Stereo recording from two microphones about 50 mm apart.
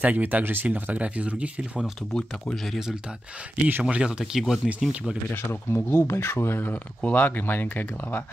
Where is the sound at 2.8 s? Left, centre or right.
Centre.